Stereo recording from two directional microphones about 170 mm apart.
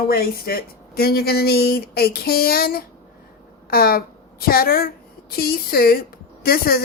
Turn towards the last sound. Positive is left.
turn(degrees=60)  # may be behind; listen again after turning